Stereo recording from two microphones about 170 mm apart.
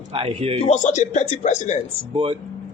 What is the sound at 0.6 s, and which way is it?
A man's voice, 45° left (ahead or behind).